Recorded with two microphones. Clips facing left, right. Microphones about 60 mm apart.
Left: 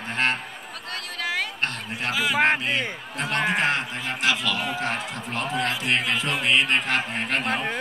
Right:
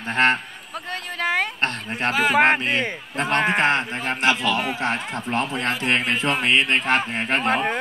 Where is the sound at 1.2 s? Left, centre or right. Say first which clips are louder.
Right 5 dB; right.